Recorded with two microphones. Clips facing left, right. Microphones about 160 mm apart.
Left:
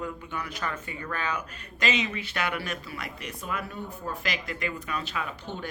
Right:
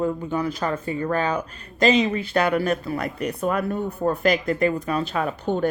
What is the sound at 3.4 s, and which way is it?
Speech, 50° right (ahead or behind).